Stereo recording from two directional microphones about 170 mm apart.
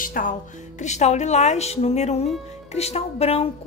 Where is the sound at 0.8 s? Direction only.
40° left (ahead or behind).